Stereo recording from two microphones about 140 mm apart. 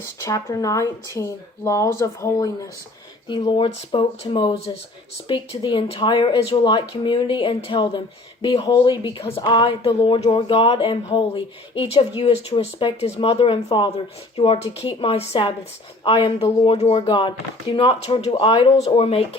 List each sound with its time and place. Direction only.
0.0 s speech: 25° left (ahead or behind)
3.2 s speech: 35° left (ahead or behind)